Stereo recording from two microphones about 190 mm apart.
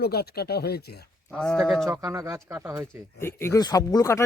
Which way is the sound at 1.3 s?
5° left (ahead or behind).